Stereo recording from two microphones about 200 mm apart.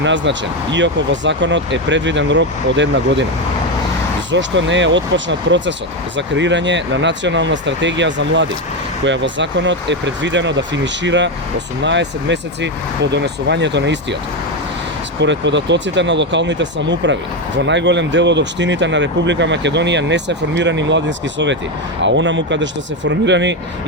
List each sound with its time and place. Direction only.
0.0 s speech: 65° right (ahead or behind)
4.3 s speech: 65° right (ahead or behind)
15.2 s speech: 65° right (ahead or behind)